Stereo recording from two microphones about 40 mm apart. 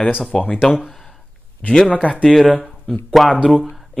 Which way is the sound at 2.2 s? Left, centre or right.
Centre.